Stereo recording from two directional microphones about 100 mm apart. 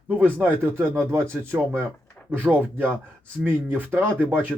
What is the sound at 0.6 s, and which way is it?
Speech, 25° right (ahead or behind).